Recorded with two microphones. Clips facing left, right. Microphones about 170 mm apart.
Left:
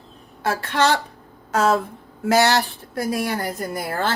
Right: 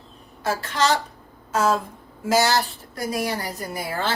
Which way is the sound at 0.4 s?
60° left (ahead or behind).